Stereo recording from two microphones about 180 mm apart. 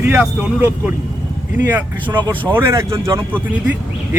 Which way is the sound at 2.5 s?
15° right (ahead or behind).